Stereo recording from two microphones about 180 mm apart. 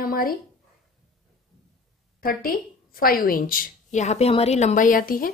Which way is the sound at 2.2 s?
55° left (ahead or behind).